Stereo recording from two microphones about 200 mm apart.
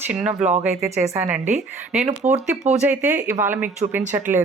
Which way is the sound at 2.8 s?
10° right (ahead or behind).